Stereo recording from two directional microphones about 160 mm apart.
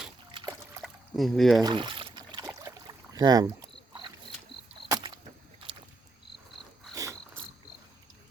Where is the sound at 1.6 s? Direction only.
30° right (ahead or behind).